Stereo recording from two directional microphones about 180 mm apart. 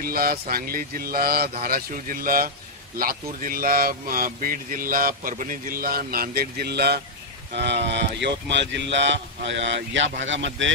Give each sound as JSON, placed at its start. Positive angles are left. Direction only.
{"t": 0.0, "sound": "speech", "side_deg": -55}